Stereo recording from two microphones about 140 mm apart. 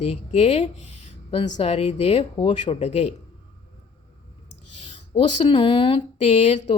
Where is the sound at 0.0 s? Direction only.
50° left (ahead or behind).